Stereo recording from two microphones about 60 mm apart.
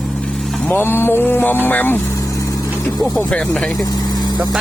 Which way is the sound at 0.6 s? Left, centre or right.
Left.